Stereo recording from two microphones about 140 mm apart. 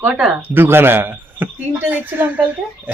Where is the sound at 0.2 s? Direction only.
15° right (ahead or behind).